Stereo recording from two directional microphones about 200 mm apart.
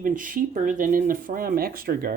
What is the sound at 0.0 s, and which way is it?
Speech, 40° right (ahead or behind).